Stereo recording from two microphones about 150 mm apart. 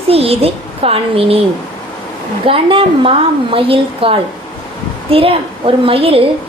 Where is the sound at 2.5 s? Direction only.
35° right (ahead or behind).